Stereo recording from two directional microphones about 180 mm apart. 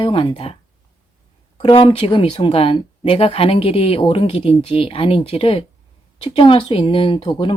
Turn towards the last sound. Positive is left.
turn(degrees=30)  # may be behind; listen again after turning